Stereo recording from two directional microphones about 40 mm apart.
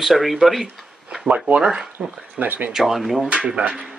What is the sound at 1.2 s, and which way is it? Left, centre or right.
Speech, right.